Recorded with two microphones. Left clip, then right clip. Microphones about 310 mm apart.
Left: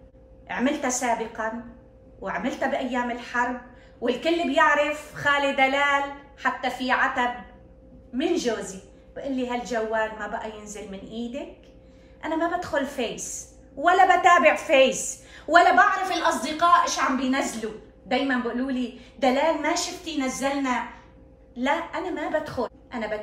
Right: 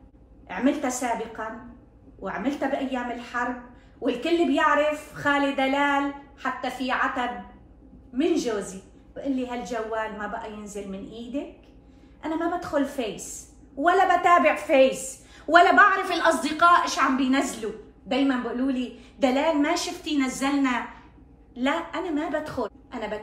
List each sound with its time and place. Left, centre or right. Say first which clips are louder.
0.5 s a woman's voice: even; left
9.3 s a woman's voice: left 2 dB; left
12.2 s a woman's voice: left 2 dB; left